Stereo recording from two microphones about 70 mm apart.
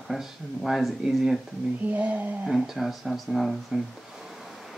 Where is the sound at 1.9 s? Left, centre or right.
Right.